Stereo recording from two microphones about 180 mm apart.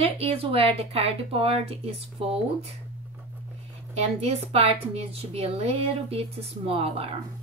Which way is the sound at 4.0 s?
35° right (ahead or behind).